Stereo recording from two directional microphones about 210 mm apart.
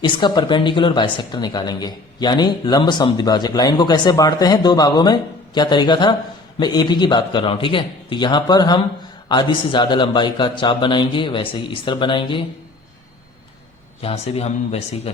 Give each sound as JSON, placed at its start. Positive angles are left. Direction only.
{"t": 0.0, "sound": "speech", "side_deg": 20}
{"t": 14.0, "sound": "speech", "side_deg": 30}